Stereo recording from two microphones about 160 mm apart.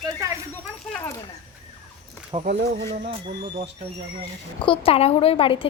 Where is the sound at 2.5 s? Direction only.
90° right.